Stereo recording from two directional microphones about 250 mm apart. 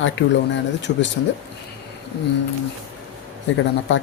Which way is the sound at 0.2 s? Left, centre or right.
Left.